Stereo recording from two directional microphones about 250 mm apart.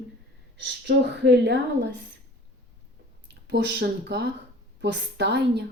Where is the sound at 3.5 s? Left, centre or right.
Right.